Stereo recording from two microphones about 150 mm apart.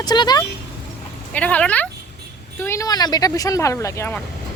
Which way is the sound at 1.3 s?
10° left (ahead or behind).